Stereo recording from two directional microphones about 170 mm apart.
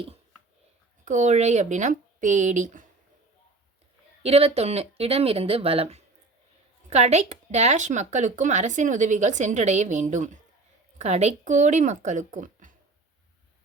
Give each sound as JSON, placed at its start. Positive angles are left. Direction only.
{"t": 1.0, "sound": "speech", "side_deg": -45}
{"t": 4.2, "sound": "speech", "side_deg": -35}